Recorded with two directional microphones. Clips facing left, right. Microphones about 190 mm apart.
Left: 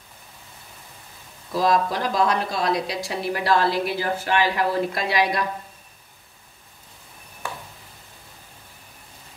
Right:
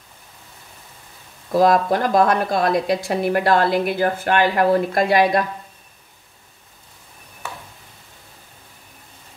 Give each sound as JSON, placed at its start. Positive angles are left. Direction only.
{"t": 1.5, "sound": "a woman's voice", "side_deg": -55}